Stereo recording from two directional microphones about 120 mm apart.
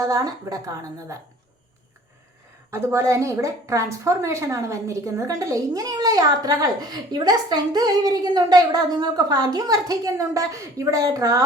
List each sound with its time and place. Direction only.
0.0 s a woman's voice: 30° right (ahead or behind)
2.6 s a woman's voice: 25° right (ahead or behind)